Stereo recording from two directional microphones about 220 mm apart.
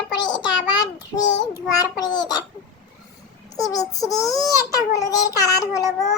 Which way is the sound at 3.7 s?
15° left (ahead or behind).